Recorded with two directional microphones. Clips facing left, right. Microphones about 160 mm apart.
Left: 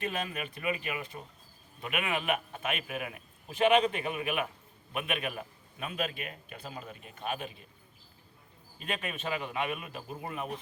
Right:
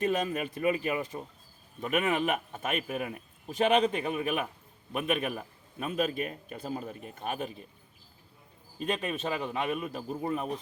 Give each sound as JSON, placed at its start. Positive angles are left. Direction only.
{"t": 0.0, "sound": "a man's voice", "side_deg": -40}
{"t": 8.8, "sound": "a man's voice", "side_deg": -40}